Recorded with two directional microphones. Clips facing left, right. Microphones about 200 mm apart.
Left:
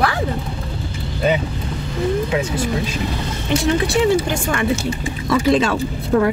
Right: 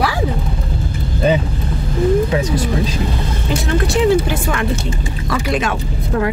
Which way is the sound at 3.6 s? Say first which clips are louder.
Right 1 dB; centre (ahead or behind).